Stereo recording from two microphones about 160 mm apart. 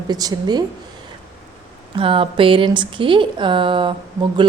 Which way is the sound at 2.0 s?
35° right (ahead or behind).